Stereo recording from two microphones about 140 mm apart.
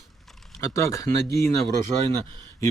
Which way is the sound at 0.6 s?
20° left (ahead or behind).